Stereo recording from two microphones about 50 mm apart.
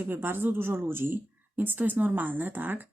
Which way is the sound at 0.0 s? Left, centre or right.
Right.